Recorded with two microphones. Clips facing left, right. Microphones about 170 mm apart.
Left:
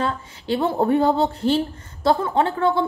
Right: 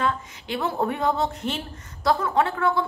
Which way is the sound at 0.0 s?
30° left (ahead or behind).